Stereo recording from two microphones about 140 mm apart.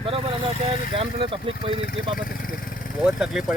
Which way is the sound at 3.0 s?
5° right (ahead or behind).